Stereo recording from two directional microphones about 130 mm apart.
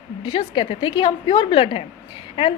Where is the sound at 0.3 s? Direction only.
40° left (ahead or behind).